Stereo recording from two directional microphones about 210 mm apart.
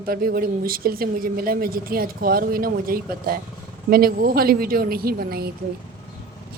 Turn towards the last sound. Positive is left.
turn(degrees=-45)  # may be behind; listen again after turning